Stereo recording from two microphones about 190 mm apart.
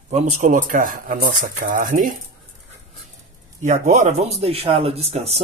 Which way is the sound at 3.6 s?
40° right (ahead or behind).